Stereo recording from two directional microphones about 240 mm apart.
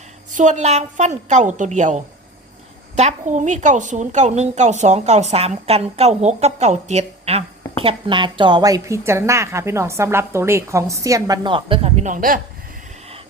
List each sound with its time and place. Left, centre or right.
0.3 s a woman's voice: right